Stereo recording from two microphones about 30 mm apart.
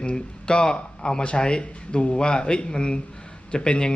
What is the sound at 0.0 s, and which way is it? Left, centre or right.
Speech, left.